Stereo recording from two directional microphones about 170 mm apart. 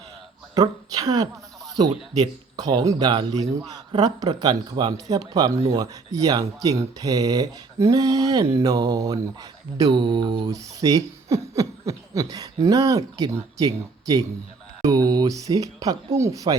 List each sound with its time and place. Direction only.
0.5 s a woman's voice: 20° right (ahead or behind)